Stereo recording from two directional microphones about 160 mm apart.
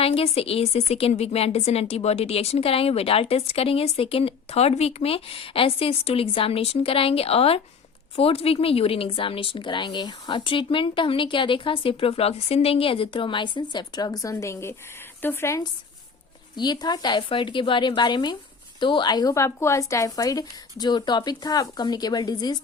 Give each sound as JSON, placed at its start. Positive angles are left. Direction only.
{"t": 0.0, "sound": "a woman's voice", "side_deg": 35}
{"t": 16.6, "sound": "speech", "side_deg": 25}